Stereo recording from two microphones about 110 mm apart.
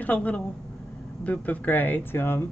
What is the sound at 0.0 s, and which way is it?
Speech, 15° left (ahead or behind).